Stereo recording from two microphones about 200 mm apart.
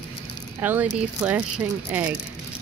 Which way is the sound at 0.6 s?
10° right (ahead or behind).